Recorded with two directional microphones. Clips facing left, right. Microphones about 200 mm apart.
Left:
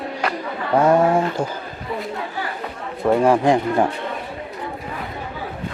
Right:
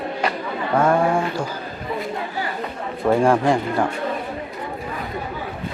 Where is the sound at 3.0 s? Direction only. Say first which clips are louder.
Left 1 dB; 5° left (ahead or behind).